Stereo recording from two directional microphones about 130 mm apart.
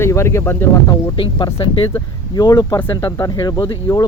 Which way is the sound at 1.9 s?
30° left (ahead or behind).